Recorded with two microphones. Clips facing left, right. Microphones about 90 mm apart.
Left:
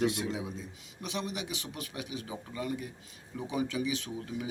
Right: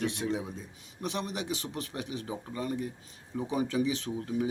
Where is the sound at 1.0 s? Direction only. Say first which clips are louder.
Right 3 dB; 45° right (ahead or behind).